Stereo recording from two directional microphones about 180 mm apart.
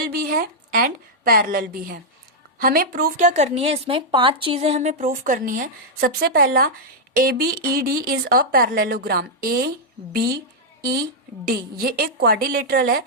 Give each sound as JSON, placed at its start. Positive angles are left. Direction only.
{"t": 0.0, "sound": "a woman's voice", "side_deg": -55}
{"t": 11.4, "sound": "speech", "side_deg": -60}